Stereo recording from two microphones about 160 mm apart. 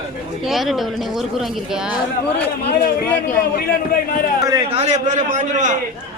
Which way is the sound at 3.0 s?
10° left (ahead or behind).